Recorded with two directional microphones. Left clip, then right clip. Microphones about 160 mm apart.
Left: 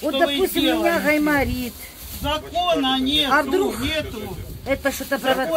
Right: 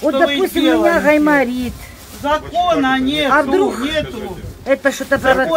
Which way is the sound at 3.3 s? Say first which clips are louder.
Right 6 dB; 10° left (ahead or behind).